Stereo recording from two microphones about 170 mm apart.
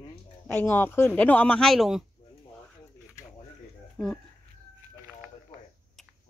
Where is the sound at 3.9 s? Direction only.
5° left (ahead or behind).